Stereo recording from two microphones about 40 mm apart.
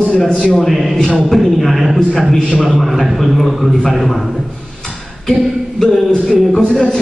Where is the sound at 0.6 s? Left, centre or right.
Centre.